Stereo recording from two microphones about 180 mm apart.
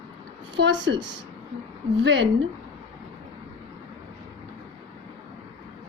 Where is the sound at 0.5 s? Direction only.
85° right.